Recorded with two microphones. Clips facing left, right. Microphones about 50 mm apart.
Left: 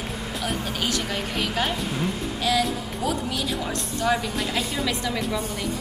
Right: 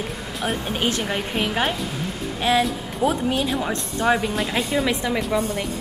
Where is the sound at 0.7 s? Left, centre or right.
Right.